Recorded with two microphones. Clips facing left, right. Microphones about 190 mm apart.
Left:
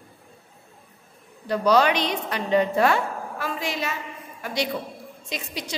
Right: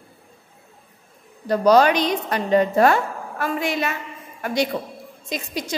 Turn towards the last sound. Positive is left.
turn(degrees=-45)  # may be behind; listen again after turning